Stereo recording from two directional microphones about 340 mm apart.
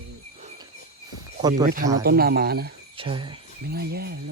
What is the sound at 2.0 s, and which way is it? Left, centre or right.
Speech, right.